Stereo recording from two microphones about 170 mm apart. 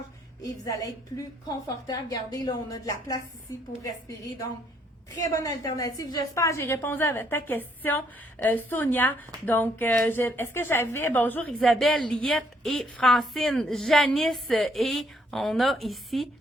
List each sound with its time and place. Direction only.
0.4 s a woman's voice: 20° left (ahead or behind)
5.2 s a woman's voice: 20° left (ahead or behind); by 16.3 s centre (ahead or behind)